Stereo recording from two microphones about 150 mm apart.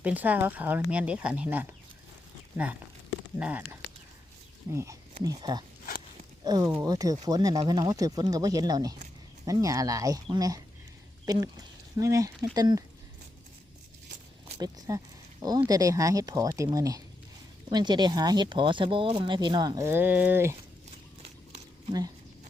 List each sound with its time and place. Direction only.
0.0 s speech: 10° right (ahead or behind)
3.3 s speech: 10° right (ahead or behind)
14.6 s speech: 25° right (ahead or behind)
19.9 s speech: 15° right (ahead or behind)